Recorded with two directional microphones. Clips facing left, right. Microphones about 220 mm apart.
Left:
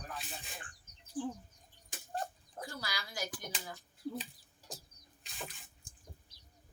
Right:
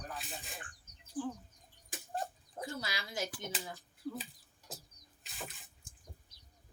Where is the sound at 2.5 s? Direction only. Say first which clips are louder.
Right 2 dB; 25° right (ahead or behind).